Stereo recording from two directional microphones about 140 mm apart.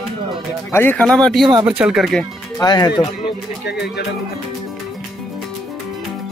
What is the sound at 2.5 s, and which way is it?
Speech, 30° left (ahead or behind).